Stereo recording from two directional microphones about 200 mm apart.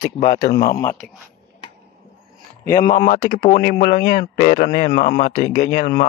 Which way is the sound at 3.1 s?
40° left (ahead or behind).